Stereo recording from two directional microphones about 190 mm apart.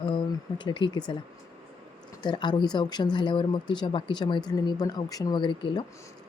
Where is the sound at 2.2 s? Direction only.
25° left (ahead or behind).